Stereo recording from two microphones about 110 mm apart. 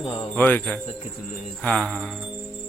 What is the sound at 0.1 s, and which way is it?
Jingle bell, 15° left (ahead or behind).